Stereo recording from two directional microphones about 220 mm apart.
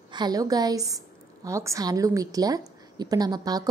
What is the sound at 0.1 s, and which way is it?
A woman's voice, 20° right (ahead or behind).